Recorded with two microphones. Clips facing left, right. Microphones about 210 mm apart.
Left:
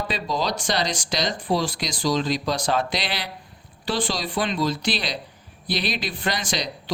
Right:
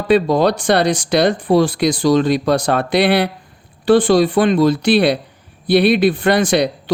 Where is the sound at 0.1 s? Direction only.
60° right (ahead or behind).